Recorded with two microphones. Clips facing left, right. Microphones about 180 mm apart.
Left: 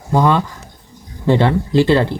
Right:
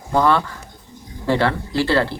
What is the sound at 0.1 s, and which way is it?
Speech, 15° left (ahead or behind).